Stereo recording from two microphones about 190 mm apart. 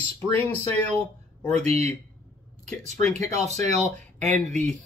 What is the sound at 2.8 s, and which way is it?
Speech, 35° right (ahead or behind).